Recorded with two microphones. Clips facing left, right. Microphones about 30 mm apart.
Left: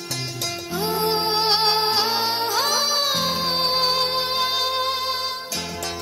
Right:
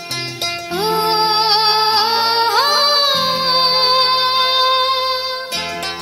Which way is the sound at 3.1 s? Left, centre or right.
Right.